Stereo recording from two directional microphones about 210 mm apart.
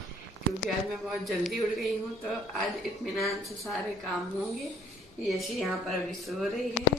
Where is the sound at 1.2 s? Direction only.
Centre (ahead or behind).